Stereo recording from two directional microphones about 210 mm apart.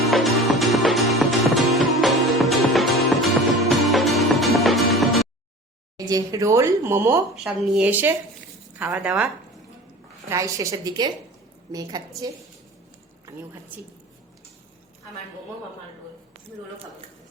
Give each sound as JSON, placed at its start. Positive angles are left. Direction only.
{"t": 0.1, "sound": "music", "side_deg": 0}
{"t": 6.1, "sound": "a woman's voice", "side_deg": -15}